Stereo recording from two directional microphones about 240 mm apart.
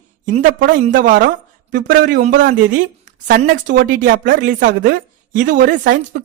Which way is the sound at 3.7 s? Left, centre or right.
Right.